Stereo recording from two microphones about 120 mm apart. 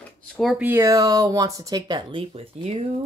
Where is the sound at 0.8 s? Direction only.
30° right (ahead or behind).